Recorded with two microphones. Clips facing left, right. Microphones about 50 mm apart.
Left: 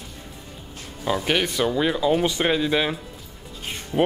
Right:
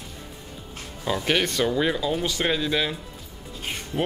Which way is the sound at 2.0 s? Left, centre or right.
Centre.